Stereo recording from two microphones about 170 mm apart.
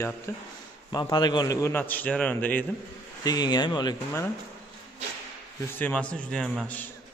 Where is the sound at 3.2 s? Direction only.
25° left (ahead or behind).